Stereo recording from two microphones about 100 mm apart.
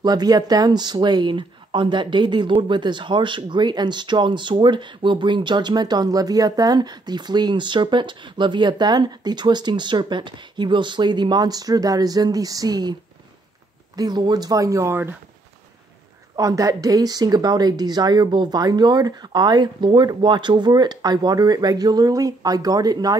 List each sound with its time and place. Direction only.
0.0 s speech: 40° right (ahead or behind)
13.9 s speech: 45° right (ahead or behind); by 15.1 s 25° right (ahead or behind)
16.3 s speech: 35° right (ahead or behind)